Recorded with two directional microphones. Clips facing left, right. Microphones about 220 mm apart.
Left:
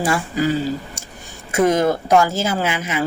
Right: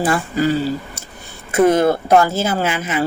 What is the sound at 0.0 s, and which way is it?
Speech, 10° left (ahead or behind).